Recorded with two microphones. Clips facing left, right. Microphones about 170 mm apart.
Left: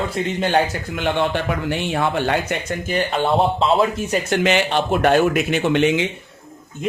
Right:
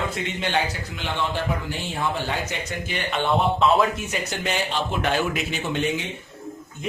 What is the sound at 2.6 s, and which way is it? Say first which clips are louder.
Speech: left 7 dB; 40° left (ahead or behind).